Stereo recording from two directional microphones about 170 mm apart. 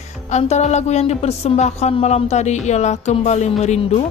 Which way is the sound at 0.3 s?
40° left (ahead or behind).